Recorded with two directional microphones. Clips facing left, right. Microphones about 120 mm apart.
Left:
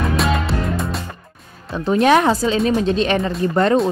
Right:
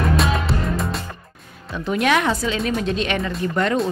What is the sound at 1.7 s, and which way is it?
A woman's voice, 30° left (ahead or behind).